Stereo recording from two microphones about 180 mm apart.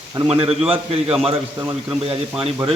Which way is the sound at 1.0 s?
5° right (ahead or behind).